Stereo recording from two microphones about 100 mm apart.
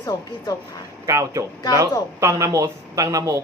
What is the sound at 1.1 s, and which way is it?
Speech, 30° right (ahead or behind).